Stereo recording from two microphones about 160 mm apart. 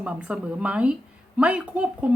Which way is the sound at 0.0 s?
5° right (ahead or behind).